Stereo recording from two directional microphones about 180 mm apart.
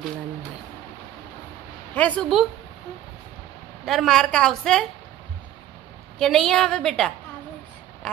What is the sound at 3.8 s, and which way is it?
A woman's voice, centre (ahead or behind).